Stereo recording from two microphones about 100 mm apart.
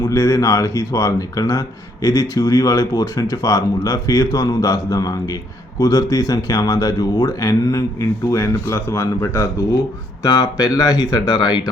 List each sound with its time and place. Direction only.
0.0 s speech: 30° left (ahead or behind)